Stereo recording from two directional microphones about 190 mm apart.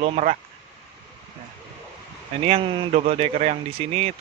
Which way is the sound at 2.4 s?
30° right (ahead or behind).